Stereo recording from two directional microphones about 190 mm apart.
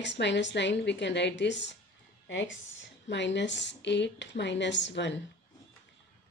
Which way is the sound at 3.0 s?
70° left (ahead or behind).